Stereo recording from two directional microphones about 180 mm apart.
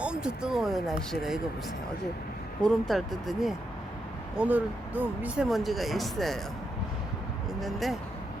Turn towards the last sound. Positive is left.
turn(degrees=0)  # may be behind; listen again after turning